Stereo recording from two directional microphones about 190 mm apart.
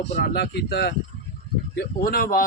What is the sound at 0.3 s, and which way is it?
Speech, 60° left (ahead or behind).